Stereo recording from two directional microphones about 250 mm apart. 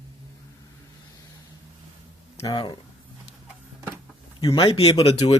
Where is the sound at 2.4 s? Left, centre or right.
Centre.